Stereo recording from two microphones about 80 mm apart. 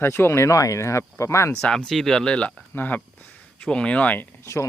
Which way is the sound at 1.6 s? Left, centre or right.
Centre.